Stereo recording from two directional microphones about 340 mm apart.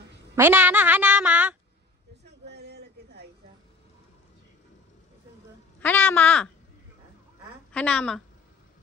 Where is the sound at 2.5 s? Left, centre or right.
Right.